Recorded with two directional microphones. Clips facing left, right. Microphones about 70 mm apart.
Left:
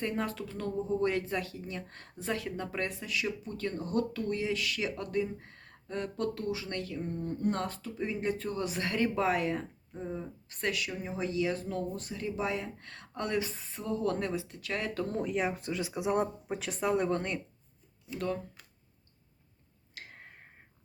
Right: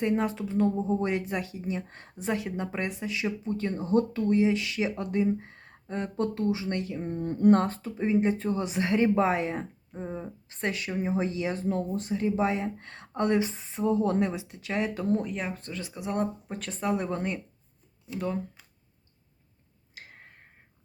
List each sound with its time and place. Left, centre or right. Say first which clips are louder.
0.0 s speech: right 6 dB; centre
7.3 s speech: right 12 dB; right
7.6 s speech: right 6 dB; right; by 15.1 s centre
15.1 s speech: right 2 dB; centre
19.9 s tick-tock: even; centre